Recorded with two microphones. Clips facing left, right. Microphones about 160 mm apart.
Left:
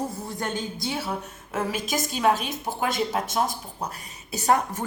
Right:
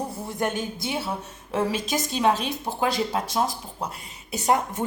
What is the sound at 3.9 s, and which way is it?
Speech, 20° right (ahead or behind).